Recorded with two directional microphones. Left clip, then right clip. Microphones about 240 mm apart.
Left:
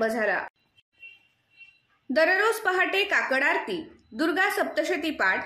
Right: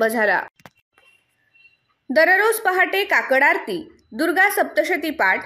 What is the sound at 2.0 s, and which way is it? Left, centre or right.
A woman's voice, right.